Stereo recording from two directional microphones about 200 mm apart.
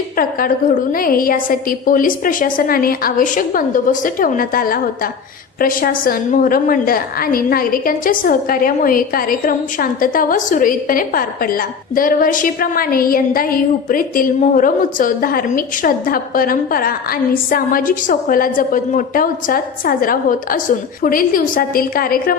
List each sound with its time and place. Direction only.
0.2 s a woman's voice: 45° left (ahead or behind)